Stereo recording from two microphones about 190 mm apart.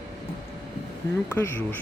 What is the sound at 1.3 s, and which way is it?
Speech, 10° left (ahead or behind).